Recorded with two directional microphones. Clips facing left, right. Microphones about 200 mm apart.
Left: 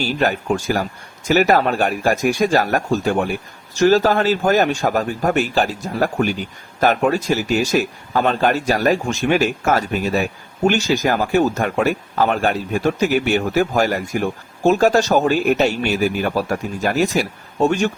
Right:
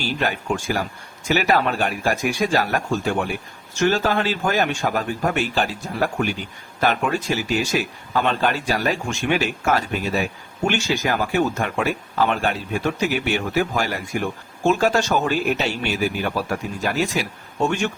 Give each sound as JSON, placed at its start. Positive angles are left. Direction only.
{"t": 0.0, "sound": "speech", "side_deg": 40}